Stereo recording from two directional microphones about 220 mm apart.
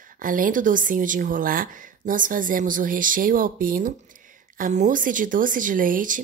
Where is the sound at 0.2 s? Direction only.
40° right (ahead or behind).